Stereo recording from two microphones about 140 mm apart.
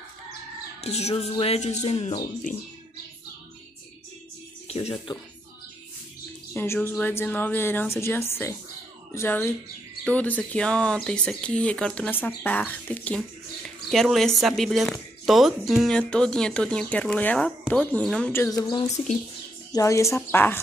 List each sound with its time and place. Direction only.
0.7 s speech: 50° left (ahead or behind)
1.4 s music: 50° left (ahead or behind)
4.6 s music: 50° left (ahead or behind)
6.5 s speech: 15° left (ahead or behind)
18.5 s a woman's voice: 30° left (ahead or behind); by 20.5 s 15° left (ahead or behind)